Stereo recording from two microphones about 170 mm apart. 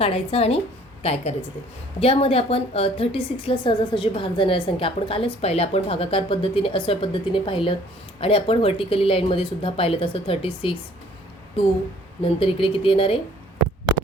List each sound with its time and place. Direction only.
0.0 s a woman's voice: 35° left (ahead or behind)
12.2 s a woman's voice: 35° left (ahead or behind)